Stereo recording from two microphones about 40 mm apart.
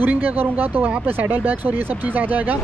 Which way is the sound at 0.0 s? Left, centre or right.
Right.